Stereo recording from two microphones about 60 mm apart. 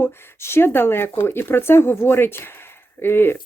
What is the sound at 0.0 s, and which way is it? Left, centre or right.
Speech, left.